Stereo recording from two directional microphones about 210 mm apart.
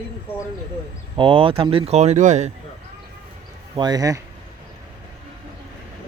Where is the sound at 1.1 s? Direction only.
25° right (ahead or behind).